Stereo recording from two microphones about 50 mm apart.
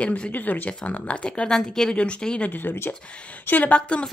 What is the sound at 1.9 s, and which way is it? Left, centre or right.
Speech, left.